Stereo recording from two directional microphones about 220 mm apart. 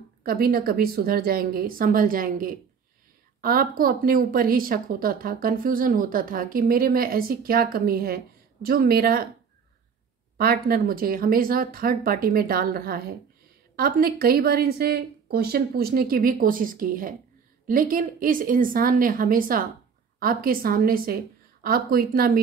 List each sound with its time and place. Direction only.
0.2 s a woman's voice: 40° right (ahead or behind)
10.3 s a woman's voice: 45° right (ahead or behind)